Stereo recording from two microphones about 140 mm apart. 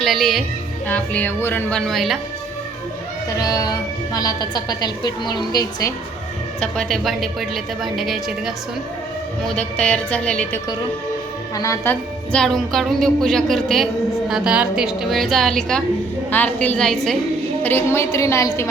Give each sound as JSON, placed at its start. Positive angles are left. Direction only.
{"t": 0.0, "sound": "speech", "side_deg": 0}
{"t": 0.9, "sound": "music", "side_deg": 10}
{"t": 3.3, "sound": "a woman's voice", "side_deg": 25}
{"t": 6.6, "sound": "a woman's voice", "side_deg": 5}
{"t": 9.6, "sound": "music", "side_deg": 10}
{"t": 11.5, "sound": "a woman's voice", "side_deg": 20}
{"t": 12.3, "sound": "a woman's voice", "side_deg": 5}
{"t": 17.6, "sound": "a woman's voice", "side_deg": 15}